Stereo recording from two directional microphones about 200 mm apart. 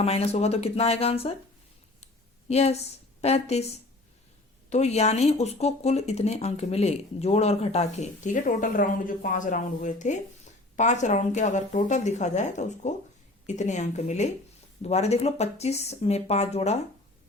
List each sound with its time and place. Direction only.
0.0 s speech: 30° left (ahead or behind)
2.5 s speech: 30° left (ahead or behind)
4.7 s speech: 35° left (ahead or behind)